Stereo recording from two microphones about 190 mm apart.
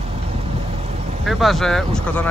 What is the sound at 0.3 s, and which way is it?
Quack, 35° right (ahead or behind).